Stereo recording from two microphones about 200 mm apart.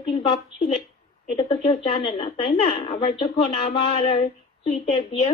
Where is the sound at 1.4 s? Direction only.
25° left (ahead or behind).